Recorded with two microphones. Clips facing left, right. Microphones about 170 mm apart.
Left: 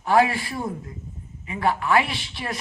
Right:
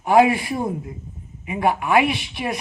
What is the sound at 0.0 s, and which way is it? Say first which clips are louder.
A man's voice: right 4 dB; 20° right (ahead or behind).